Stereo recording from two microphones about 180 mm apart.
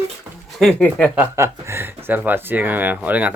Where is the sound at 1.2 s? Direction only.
15° right (ahead or behind).